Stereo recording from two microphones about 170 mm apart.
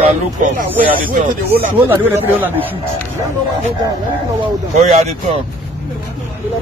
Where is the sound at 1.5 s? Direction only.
10° right (ahead or behind).